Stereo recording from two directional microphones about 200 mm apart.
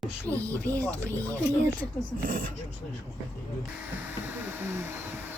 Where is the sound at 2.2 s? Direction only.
45° right (ahead or behind).